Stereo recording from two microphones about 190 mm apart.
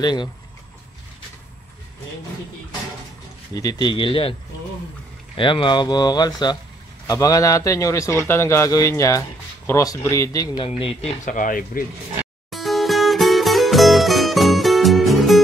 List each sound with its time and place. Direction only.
0.0 s speech: 20° left (ahead or behind)
3.5 s a man's voice: 20° left (ahead or behind)
10.7 s speech: 30° left (ahead or behind); by 11.8 s 45° left (ahead or behind)
12.4 s music: centre (ahead or behind)